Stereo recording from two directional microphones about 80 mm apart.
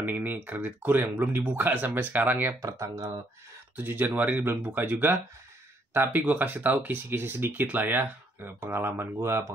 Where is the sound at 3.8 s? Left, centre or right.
Right.